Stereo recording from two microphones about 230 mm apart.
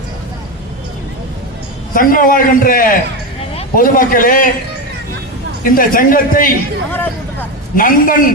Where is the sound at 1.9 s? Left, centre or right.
Left.